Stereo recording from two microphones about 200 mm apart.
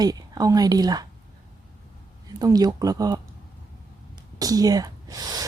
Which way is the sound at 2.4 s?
20° right (ahead or behind).